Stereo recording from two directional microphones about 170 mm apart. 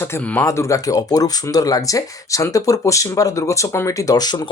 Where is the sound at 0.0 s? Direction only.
10° left (ahead or behind).